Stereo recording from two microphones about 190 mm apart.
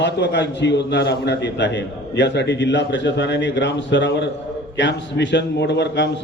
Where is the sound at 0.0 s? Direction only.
65° left (ahead or behind).